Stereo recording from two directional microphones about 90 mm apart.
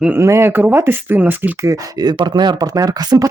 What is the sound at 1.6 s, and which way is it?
Speech, 40° right (ahead or behind).